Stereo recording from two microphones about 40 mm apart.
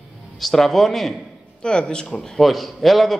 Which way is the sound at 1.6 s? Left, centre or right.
Left.